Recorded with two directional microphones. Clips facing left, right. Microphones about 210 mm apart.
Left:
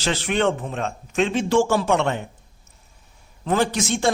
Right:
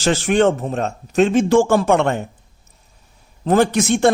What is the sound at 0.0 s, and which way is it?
A man's voice, 45° right (ahead or behind).